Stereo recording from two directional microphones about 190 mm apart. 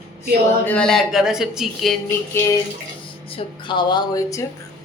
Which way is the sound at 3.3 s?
25° left (ahead or behind).